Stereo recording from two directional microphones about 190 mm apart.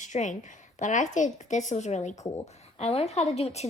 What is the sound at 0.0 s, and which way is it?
A woman's voice, 40° left (ahead or behind).